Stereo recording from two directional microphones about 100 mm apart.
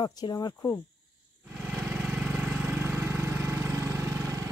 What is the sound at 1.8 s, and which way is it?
Vehicle, 10° right (ahead or behind).